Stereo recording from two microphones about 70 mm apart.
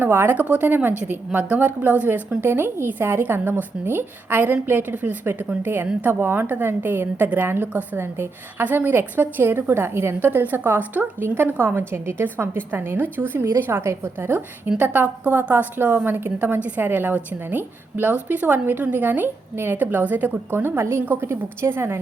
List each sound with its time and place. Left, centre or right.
0.0 s a woman's voice: right